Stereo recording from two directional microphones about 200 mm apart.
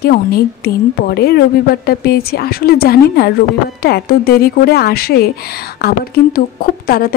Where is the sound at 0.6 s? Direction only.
50° left (ahead or behind).